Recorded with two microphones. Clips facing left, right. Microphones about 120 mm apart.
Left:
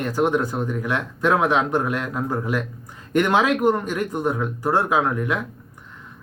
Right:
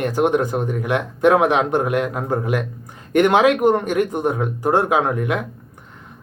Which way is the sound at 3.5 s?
20° right (ahead or behind).